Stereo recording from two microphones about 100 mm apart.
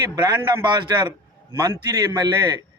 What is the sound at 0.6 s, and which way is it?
Speech, 45° right (ahead or behind).